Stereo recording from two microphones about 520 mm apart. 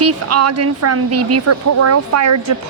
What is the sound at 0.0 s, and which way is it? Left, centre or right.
A woman's voice, right.